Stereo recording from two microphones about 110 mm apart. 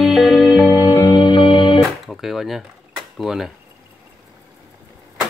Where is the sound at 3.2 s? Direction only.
5° right (ahead or behind).